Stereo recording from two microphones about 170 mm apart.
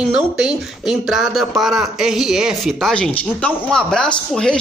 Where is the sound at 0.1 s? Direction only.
5° right (ahead or behind).